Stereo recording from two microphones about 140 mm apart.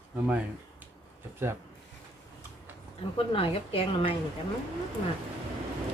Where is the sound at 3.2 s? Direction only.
40° left (ahead or behind).